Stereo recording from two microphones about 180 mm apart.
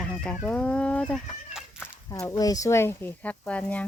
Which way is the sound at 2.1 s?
20° left (ahead or behind).